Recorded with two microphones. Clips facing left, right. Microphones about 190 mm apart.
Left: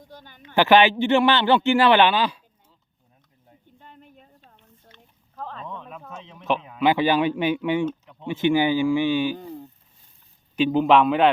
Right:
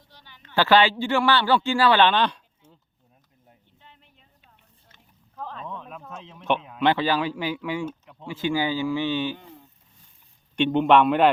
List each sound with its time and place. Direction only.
0.0 s a sound: 50° left (ahead or behind)
0.4 s a man's voice: 15° left (ahead or behind)
3.8 s a sound: 45° left (ahead or behind)
5.5 s speech: centre (ahead or behind)
6.9 s a man's voice: 20° left (ahead or behind)
7.9 s speech: 5° right (ahead or behind)
8.3 s speech: 20° left (ahead or behind)
9.4 s a sound: 35° left (ahead or behind)
10.5 s a man's voice: 5° left (ahead or behind)